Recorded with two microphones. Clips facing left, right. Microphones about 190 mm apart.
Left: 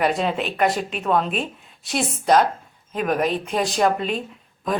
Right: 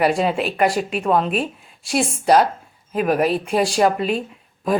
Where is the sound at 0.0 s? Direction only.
5° right (ahead or behind).